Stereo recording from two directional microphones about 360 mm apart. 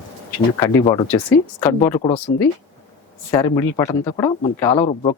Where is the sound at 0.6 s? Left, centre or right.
Centre.